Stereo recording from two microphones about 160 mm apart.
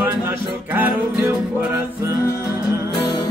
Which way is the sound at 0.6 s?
10° right (ahead or behind).